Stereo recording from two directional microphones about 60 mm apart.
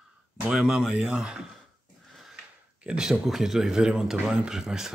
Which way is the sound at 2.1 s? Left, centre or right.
Centre.